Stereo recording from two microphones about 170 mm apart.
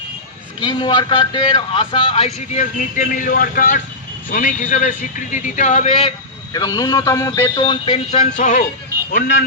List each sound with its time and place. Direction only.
0.6 s a man's voice: 25° left (ahead or behind)
6.5 s a man's voice: 20° left (ahead or behind); by 8.6 s 45° left (ahead or behind)
9.1 s speech: 70° left (ahead or behind)